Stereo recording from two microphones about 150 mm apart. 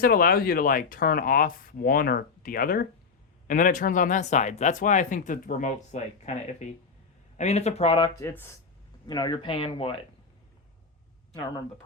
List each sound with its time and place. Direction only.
0.0 s speech: 70° left (ahead or behind); by 8.1 s 40° left (ahead or behind)
8.1 s speech: 15° left (ahead or behind)
9.0 s speech: 30° left (ahead or behind)